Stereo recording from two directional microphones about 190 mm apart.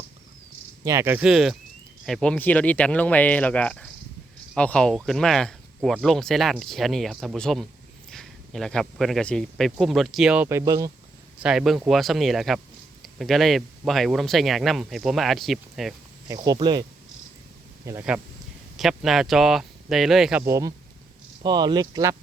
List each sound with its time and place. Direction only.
0.9 s cricket: 15° right (ahead or behind)
2.0 s speech: 5° left (ahead or behind); by 10.9 s 15° right (ahead or behind)
11.4 s speech: centre (ahead or behind)
16.3 s speech: 20° right (ahead or behind)
17.8 s cricket: 10° right (ahead or behind)
18.8 s speech: centre (ahead or behind)
20.4 s cricket: 15° right (ahead or behind)
21.4 s speech: 20° right (ahead or behind)